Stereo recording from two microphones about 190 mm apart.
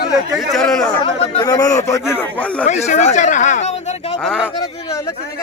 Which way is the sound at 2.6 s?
40° left (ahead or behind).